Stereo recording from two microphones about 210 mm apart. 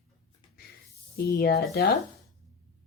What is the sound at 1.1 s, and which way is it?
Speech, 50° left (ahead or behind).